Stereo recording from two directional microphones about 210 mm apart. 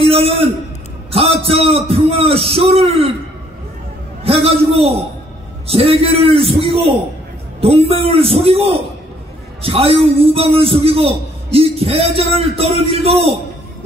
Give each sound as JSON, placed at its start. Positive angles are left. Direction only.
{"t": 0.0, "sound": "a sound", "side_deg": -30}
{"t": 1.1, "sound": "a man's voice", "side_deg": -25}
{"t": 4.2, "sound": "a man's voice", "side_deg": -25}